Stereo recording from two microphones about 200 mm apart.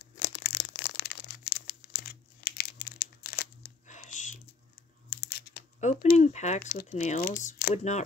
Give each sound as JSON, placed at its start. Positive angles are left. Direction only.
{"t": 0.0, "sound": "crushing", "side_deg": 55}
{"t": 3.8, "sound": "a sound", "side_deg": 35}
{"t": 5.1, "sound": "a sound", "side_deg": 55}
{"t": 5.8, "sound": "speech", "side_deg": 35}
{"t": 7.4, "sound": "speech", "side_deg": 50}
{"t": 7.7, "sound": "speech", "side_deg": 35}